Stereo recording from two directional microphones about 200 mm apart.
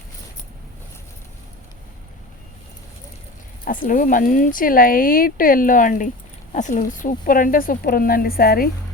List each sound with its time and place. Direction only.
3.6 s speech: 45° left (ahead or behind)